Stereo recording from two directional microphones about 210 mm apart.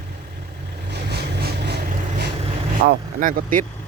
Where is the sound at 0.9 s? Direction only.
50° right (ahead or behind).